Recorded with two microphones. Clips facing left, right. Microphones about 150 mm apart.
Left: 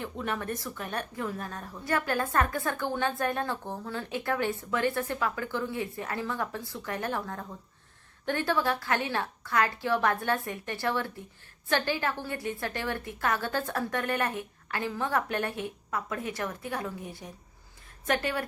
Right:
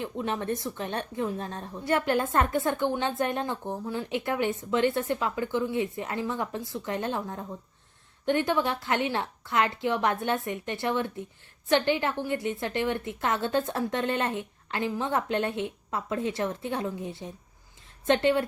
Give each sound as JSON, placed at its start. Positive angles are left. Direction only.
{"t": 0.0, "sound": "a woman's voice", "side_deg": -20}